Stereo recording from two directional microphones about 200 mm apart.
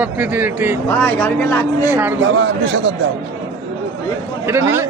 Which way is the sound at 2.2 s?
75° right (ahead or behind).